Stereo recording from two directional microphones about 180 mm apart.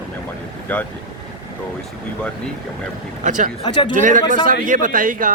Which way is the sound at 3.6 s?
25° left (ahead or behind).